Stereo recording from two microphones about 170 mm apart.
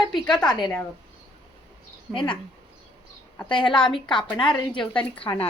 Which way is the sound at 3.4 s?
25° left (ahead or behind).